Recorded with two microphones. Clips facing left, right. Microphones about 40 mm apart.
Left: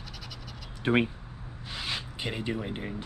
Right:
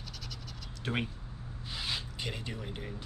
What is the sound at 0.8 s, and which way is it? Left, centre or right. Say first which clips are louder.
Speech: left 10 dB; left.